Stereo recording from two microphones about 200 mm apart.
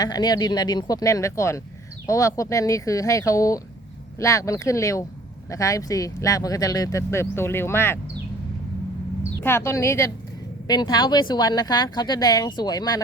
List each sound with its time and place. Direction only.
0.0 s speech: 20° left (ahead or behind)
9.4 s speech: 10° left (ahead or behind)